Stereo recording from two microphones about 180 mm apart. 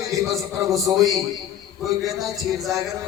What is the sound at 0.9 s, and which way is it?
Speech, 20° right (ahead or behind).